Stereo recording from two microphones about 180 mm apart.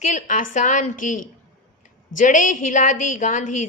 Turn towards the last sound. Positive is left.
turn(degrees=45)  # may be behind; listen again after turning